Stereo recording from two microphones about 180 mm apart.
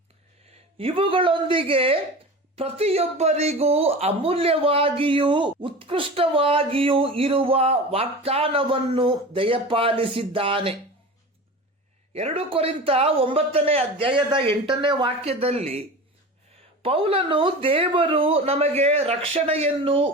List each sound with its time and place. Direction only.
0.8 s a woman's voice: 30° right (ahead or behind)
12.1 s speech: 30° right (ahead or behind)
16.8 s speech: 30° right (ahead or behind)